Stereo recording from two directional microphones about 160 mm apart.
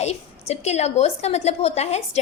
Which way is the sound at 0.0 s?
40° left (ahead or behind).